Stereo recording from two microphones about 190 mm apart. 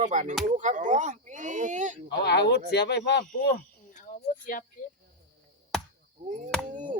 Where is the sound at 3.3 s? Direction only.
50° left (ahead or behind).